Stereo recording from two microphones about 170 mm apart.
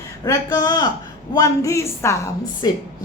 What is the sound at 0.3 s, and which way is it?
A woman's voice, 25° left (ahead or behind).